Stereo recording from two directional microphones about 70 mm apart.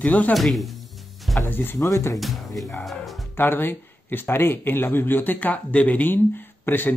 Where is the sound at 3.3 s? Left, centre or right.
Left.